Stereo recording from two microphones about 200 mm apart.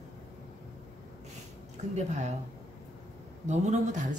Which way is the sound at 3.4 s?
35° right (ahead or behind).